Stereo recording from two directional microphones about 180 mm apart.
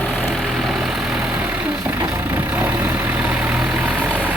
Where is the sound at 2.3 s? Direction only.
10° right (ahead or behind).